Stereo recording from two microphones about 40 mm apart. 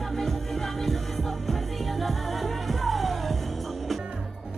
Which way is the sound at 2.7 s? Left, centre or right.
Centre.